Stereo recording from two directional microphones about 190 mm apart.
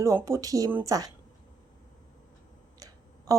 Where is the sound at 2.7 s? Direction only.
20° right (ahead or behind).